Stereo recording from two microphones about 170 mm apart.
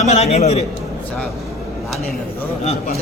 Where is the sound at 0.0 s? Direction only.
40° left (ahead or behind).